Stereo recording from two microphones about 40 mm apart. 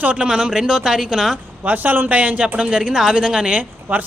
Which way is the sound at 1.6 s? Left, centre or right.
Right.